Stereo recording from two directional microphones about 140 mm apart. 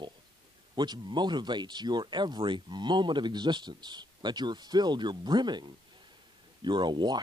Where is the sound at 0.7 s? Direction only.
30° right (ahead or behind).